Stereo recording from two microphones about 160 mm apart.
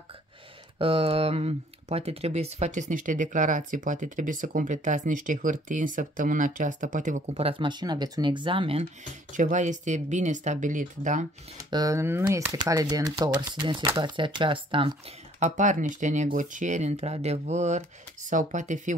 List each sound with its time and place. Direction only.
0.7 s speech: 35° right (ahead or behind); by 7.4 s 50° right (ahead or behind)
7.4 s speech: 30° right (ahead or behind)
9.3 s speech: 50° right (ahead or behind)
11.7 s speech: 20° right (ahead or behind)
15.3 s speech: 50° right (ahead or behind)